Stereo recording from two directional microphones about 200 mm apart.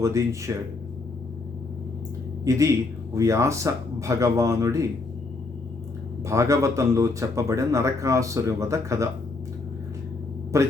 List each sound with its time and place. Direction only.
0.0 s speech: 15° right (ahead or behind)
2.4 s speech: 15° right (ahead or behind)
6.2 s speech: 15° right (ahead or behind)
10.5 s speech: 15° right (ahead or behind)